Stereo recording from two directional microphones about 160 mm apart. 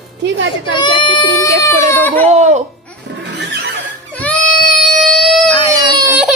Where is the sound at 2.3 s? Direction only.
45° right (ahead or behind).